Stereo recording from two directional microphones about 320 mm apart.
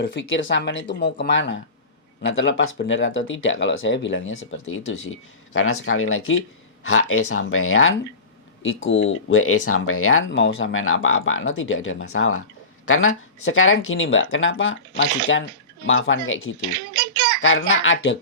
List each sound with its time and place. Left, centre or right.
0.0 s speech: left
16.6 s a child's voice: right
17.4 s speech: left